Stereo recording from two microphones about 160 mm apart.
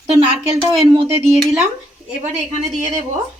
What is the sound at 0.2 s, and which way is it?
Speech, 25° right (ahead or behind).